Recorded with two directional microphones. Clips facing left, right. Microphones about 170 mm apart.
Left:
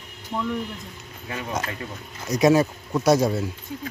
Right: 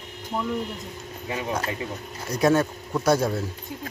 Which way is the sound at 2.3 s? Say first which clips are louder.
Left 3 dB; centre (ahead or behind).